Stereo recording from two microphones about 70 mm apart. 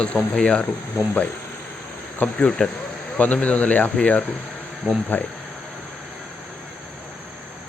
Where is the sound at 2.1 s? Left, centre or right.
Centre.